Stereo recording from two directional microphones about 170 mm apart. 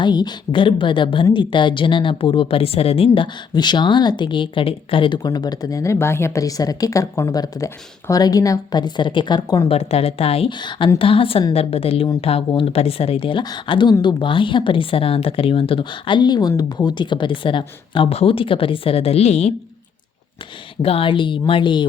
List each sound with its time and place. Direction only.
0.0 s a woman's voice: 25° left (ahead or behind)
9.7 s speech: 35° left (ahead or behind)
20.8 s a woman's voice: 35° left (ahead or behind)